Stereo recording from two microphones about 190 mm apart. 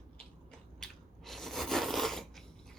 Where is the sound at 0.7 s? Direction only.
Centre (ahead or behind).